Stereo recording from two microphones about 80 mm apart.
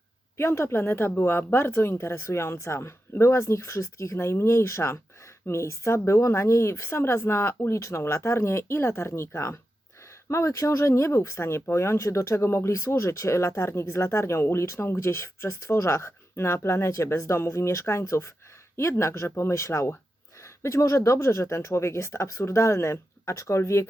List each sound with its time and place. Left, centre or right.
0.3 s speech: left